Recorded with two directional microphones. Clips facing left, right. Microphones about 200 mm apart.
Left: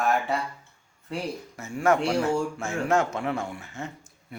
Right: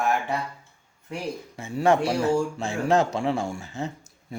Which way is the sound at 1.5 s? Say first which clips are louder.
Right 2 dB; 30° right (ahead or behind).